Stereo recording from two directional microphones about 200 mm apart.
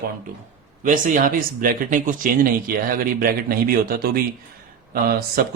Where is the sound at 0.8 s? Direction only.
40° right (ahead or behind).